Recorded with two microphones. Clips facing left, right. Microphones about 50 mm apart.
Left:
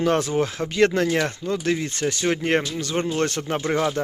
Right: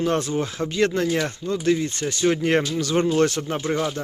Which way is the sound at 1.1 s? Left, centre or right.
Left.